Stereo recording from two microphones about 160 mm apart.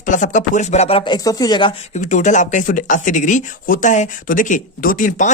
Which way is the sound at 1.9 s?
50° left (ahead or behind).